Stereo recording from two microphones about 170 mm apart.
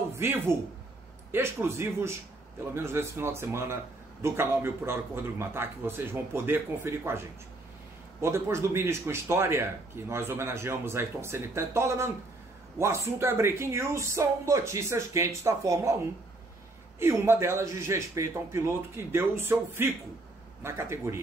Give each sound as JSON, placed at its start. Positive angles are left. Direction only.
{"t": 0.2, "sound": "speech", "side_deg": -15}
{"t": 17.0, "sound": "speech", "side_deg": -15}